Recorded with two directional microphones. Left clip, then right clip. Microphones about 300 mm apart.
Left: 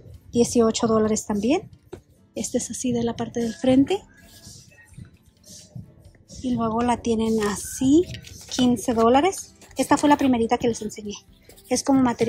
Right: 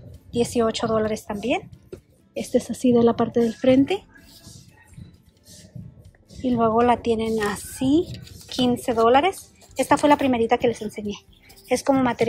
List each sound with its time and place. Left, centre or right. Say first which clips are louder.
0.3 s a woman's voice: left 2 dB; centre
6.4 s a woman's voice: right 5 dB; centre